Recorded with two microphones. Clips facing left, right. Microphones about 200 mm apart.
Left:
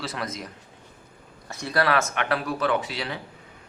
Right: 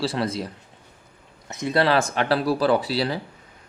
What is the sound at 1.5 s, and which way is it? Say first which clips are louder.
Speech: right 3 dB; 20° right (ahead or behind).